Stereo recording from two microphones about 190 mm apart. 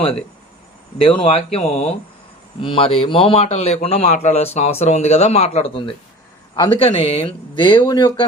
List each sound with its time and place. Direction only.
0.9 s a man's voice: 30° left (ahead or behind)